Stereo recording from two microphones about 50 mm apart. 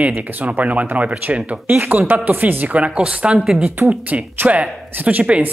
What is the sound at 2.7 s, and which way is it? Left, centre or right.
Speech, right.